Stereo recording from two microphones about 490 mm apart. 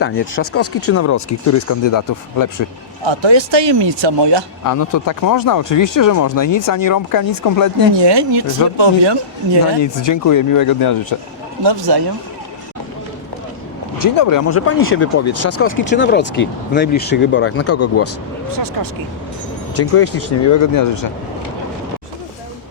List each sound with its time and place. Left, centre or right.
0.0 s speech: left
3.0 s speech: right
4.6 s speech: left
7.9 s speech: right
9.8 s speech: left
11.6 s speech: right
14.0 s speech: left
14.5 s speech: left
18.5 s speech: right
19.7 s speech: left